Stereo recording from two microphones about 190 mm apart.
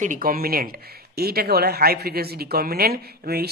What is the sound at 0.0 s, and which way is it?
Speech, 45° right (ahead or behind).